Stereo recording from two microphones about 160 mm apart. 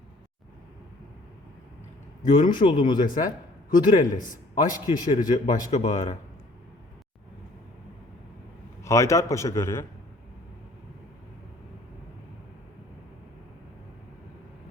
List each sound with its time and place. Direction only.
2.3 s a man's voice: 30° left (ahead or behind)
5.7 s speech: 45° left (ahead or behind)
8.8 s a man's voice: 20° left (ahead or behind)